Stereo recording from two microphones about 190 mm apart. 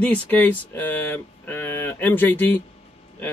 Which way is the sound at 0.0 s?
10° left (ahead or behind).